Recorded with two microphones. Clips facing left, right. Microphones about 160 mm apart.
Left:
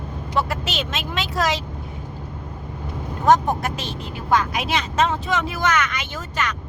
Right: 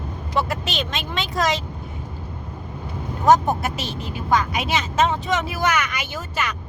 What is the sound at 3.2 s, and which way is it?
A woman's voice, 5° right (ahead or behind).